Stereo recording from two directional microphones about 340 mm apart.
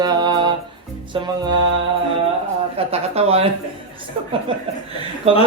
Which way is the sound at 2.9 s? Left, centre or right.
Centre.